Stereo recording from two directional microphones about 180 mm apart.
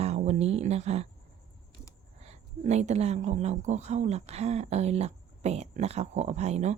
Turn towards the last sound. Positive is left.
turn(degrees=-40)  # may be behind; listen again after turning